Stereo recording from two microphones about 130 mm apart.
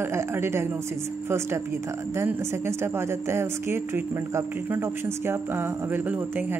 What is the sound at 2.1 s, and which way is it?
Speech, 20° right (ahead or behind).